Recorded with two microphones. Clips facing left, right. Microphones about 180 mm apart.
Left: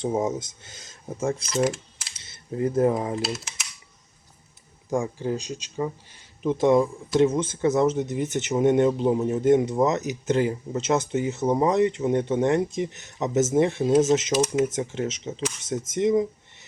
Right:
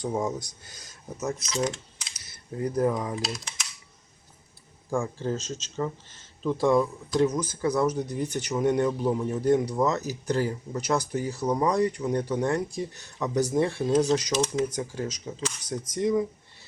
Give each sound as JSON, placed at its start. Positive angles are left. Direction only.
{"t": 0.0, "sound": "speech", "side_deg": 20}
{"t": 1.6, "sound": "a sound", "side_deg": 5}
{"t": 2.1, "sound": "speech", "side_deg": 25}
{"t": 3.2, "sound": "speech", "side_deg": 5}
{"t": 4.9, "sound": "speech", "side_deg": 15}
{"t": 14.3, "sound": "speech", "side_deg": 10}
{"t": 14.6, "sound": "speech", "side_deg": 25}